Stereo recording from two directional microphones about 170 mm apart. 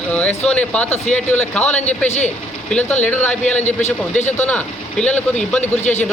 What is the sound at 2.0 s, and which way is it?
Speech, 40° left (ahead or behind).